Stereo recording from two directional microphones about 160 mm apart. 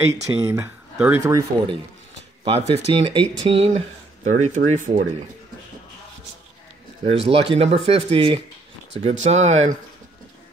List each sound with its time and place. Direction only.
0.1 s speech: 20° right (ahead or behind)
2.4 s speech: 35° right (ahead or behind)
3.5 s speech: 45° right (ahead or behind)
7.1 s speech: 40° right (ahead or behind)